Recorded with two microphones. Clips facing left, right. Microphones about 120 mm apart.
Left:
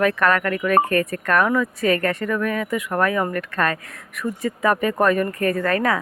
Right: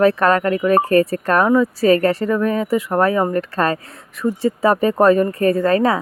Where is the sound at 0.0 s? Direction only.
30° right (ahead or behind).